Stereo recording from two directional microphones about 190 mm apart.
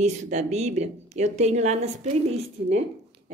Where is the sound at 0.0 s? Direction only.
35° right (ahead or behind).